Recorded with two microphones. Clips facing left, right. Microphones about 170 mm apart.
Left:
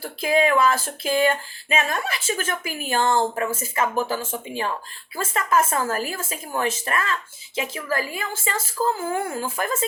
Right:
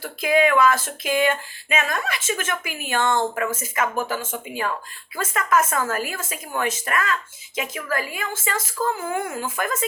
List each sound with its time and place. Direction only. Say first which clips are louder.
0.0 s speech: right 1 dB; 30° left (ahead or behind)